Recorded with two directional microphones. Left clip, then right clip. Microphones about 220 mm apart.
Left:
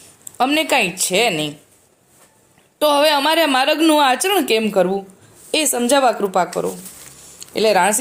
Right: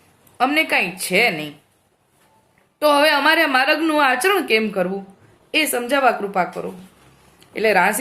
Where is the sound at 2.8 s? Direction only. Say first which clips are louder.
Left 1 dB; 30° left (ahead or behind).